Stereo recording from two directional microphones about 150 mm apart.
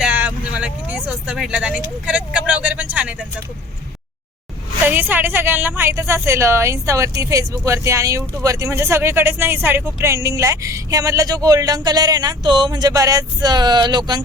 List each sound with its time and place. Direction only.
0.0 s vehicle: 5° right (ahead or behind)
4.9 s speech: 15° right (ahead or behind); by 14.2 s 30° right (ahead or behind)